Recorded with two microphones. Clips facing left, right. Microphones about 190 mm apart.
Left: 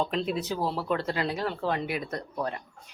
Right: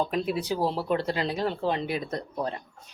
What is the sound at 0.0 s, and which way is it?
Speech, 5° right (ahead or behind).